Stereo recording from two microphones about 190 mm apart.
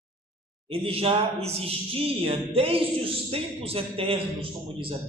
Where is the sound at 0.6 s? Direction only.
30° right (ahead or behind).